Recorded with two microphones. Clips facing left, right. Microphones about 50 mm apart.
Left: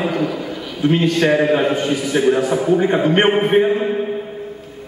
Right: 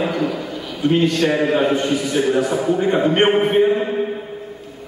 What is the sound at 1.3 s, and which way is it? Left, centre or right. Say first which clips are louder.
A man's voice: left 2 dB; centre.